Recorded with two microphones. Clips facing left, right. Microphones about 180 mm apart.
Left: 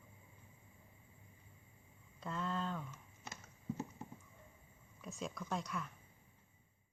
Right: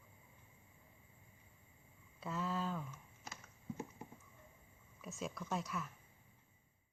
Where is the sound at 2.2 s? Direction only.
5° right (ahead or behind).